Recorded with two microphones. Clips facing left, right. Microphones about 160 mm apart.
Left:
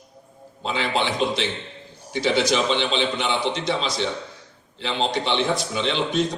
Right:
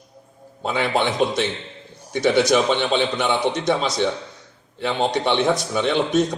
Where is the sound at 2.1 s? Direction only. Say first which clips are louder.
Right 4 dB; 50° right (ahead or behind).